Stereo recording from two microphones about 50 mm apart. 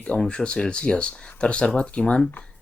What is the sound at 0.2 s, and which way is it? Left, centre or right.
Speech, centre.